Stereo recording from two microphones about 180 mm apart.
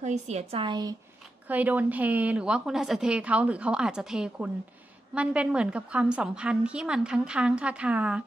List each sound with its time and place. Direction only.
0.0 s a woman's voice: 40° right (ahead or behind)
1.5 s a woman's voice: 10° right (ahead or behind)